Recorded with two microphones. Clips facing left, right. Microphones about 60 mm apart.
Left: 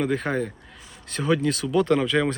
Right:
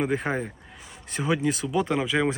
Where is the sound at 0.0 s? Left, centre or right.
Centre.